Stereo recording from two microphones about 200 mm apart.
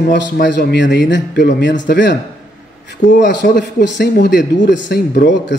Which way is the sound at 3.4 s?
50° left (ahead or behind).